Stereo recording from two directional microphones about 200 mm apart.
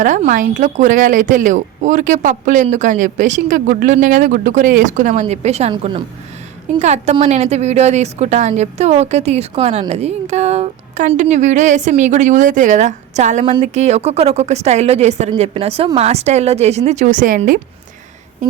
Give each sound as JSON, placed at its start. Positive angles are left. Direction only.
{"t": 0.0, "sound": "speech", "side_deg": -40}